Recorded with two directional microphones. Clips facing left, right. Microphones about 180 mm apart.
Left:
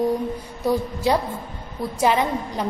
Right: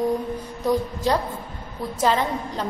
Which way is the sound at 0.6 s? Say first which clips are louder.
Left 1 dB; 10° left (ahead or behind).